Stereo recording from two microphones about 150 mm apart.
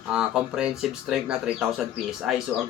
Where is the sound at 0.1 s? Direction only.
5° right (ahead or behind).